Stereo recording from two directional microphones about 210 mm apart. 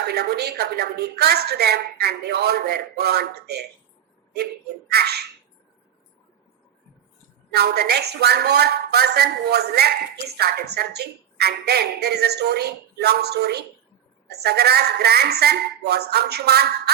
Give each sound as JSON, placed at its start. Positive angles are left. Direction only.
{"t": 0.1, "sound": "a woman's voice", "side_deg": -50}
{"t": 4.9, "sound": "a woman's voice", "side_deg": -50}
{"t": 7.5, "sound": "a woman's voice", "side_deg": -50}